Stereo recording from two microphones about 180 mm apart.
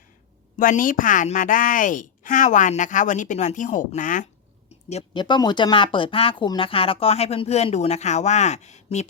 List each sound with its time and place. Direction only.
0.6 s a woman's voice: 50° left (ahead or behind)
4.9 s speech: 30° left (ahead or behind)